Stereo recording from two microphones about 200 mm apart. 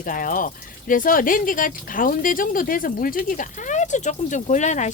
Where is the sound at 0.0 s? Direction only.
45° left (ahead or behind).